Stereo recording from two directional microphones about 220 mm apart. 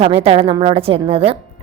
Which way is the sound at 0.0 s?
25° right (ahead or behind).